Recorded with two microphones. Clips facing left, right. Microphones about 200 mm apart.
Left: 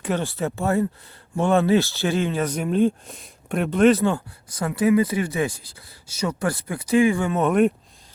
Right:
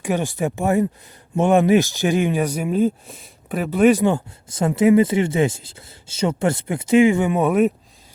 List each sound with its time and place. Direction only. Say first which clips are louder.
0.0 s speech: right 3 dB; 15° right (ahead or behind)